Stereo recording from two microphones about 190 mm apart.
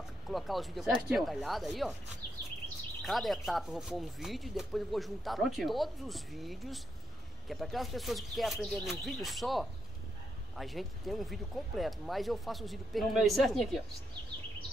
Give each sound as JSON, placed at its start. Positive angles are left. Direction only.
{"t": 0.3, "sound": "speech", "side_deg": 0}
{"t": 3.0, "sound": "speech", "side_deg": 0}